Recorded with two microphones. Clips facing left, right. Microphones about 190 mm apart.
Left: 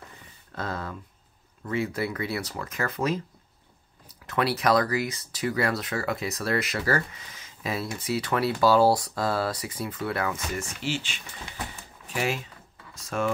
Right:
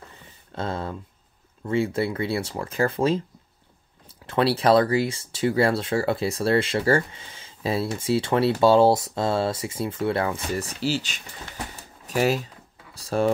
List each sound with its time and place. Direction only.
0.6 s speech: 25° right (ahead or behind)